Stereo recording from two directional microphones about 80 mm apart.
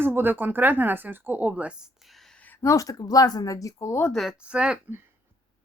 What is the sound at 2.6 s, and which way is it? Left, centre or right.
Speech, left.